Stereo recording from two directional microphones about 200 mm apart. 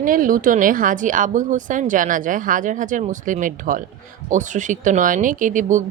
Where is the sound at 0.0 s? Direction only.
45° right (ahead or behind).